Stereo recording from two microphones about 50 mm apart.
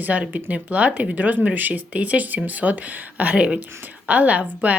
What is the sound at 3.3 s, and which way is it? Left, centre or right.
A woman's voice, centre.